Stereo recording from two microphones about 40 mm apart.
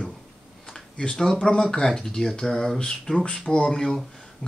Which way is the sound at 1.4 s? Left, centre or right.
Centre.